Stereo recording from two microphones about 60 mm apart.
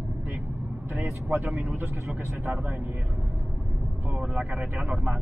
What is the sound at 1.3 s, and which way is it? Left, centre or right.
Speech, right.